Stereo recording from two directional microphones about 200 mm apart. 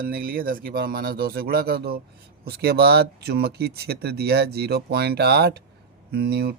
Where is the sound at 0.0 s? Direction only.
45° right (ahead or behind).